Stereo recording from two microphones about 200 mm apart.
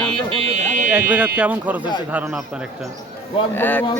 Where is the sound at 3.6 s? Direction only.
10° left (ahead or behind).